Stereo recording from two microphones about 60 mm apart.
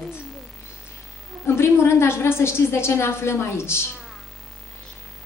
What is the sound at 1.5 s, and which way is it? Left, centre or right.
A woman's voice, left.